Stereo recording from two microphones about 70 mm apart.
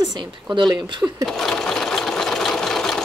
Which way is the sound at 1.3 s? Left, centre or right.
Centre.